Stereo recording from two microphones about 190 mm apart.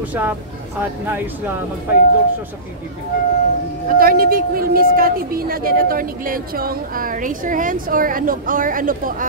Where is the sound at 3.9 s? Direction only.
50° right (ahead or behind).